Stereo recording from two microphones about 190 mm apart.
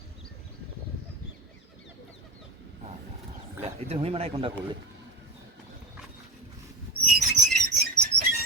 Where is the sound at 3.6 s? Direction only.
30° right (ahead or behind).